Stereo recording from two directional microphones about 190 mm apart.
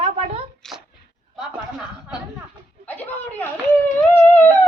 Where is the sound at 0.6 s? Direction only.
5° left (ahead or behind).